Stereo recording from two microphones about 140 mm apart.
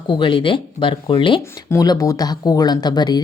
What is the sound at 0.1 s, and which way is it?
Speech, 35° left (ahead or behind).